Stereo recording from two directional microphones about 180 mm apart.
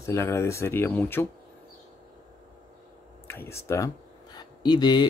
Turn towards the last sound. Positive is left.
turn(degrees=25)  # may be behind; listen again after turning